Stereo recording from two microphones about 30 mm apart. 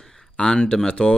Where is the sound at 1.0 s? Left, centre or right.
Left.